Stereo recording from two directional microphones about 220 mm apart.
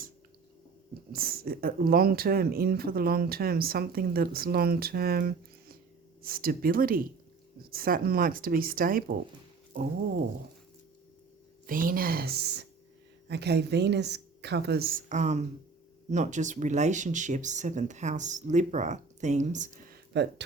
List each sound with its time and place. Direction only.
1.1 s speech: 45° right (ahead or behind)
11.6 s speech: 40° right (ahead or behind)